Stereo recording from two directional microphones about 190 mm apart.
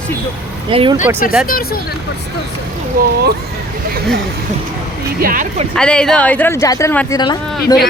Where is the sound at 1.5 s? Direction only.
50° left (ahead or behind).